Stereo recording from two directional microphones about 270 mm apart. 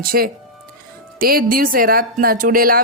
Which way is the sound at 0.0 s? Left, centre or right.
Right.